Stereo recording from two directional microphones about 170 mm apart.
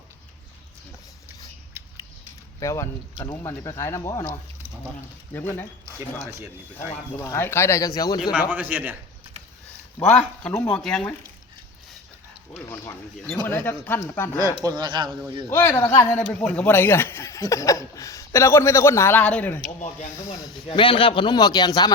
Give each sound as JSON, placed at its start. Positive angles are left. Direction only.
{"t": 1.7, "sound": "rodents", "side_deg": -15}
{"t": 2.6, "sound": "speech", "side_deg": 15}
{"t": 5.3, "sound": "speech", "side_deg": 10}
{"t": 7.2, "sound": "speech", "side_deg": 15}
{"t": 8.2, "sound": "a man's voice", "side_deg": -5}
{"t": 10.0, "sound": "speech", "side_deg": 5}
{"t": 12.5, "sound": "speech", "side_deg": 15}
{"t": 14.6, "sound": "speech", "side_deg": -25}
{"t": 15.4, "sound": "speech", "side_deg": 15}
{"t": 20.4, "sound": "a man's voice", "side_deg": 30}